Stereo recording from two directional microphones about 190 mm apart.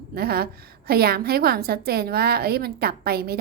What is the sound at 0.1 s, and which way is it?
A woman's voice, 55° right (ahead or behind).